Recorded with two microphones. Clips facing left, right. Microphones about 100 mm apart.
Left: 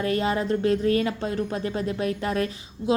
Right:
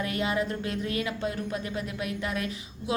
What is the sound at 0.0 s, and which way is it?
Speech, 35° left (ahead or behind).